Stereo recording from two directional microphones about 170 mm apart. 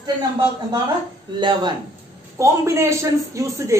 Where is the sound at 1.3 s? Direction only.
30° right (ahead or behind).